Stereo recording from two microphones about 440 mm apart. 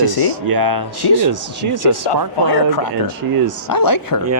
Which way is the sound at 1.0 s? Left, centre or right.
Left.